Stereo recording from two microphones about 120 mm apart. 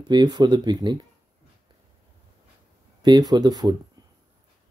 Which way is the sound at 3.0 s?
35° right (ahead or behind).